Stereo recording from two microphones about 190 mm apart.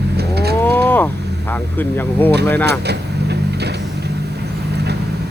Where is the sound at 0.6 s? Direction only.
10° left (ahead or behind).